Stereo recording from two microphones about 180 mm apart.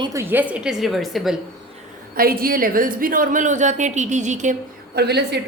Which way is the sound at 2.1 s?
55° right (ahead or behind).